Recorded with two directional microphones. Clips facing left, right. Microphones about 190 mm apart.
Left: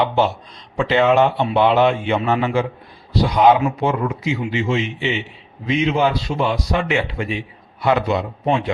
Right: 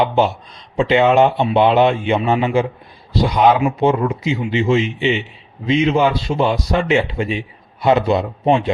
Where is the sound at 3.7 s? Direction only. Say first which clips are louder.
Right 4 dB; 25° right (ahead or behind).